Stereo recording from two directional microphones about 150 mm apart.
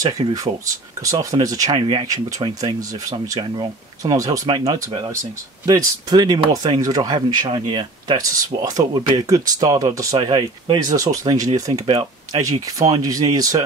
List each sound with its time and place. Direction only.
1.0 s speech: 25° right (ahead or behind)